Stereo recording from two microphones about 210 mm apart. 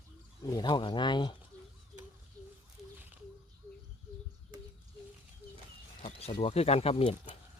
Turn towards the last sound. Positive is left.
turn(degrees=25)  # may be behind; listen again after turning